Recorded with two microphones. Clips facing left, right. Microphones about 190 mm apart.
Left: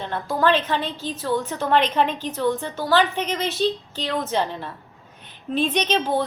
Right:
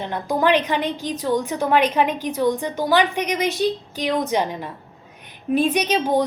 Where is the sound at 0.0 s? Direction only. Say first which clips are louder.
Right 1 dB; 15° right (ahead or behind).